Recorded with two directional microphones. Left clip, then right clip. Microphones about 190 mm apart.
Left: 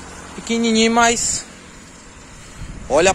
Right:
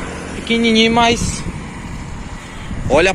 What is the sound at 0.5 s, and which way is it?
Speech, 40° left (ahead or behind).